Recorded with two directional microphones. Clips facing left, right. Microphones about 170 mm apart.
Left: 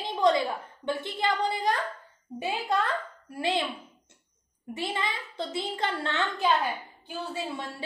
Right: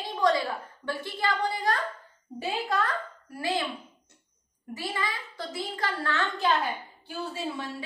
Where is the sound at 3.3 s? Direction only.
25° left (ahead or behind).